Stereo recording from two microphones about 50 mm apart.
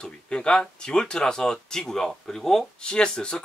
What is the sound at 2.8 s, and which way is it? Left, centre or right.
Speech, centre.